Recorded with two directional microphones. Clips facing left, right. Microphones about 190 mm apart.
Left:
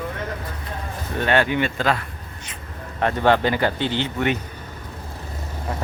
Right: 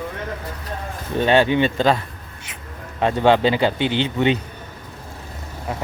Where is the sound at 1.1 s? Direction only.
20° right (ahead or behind).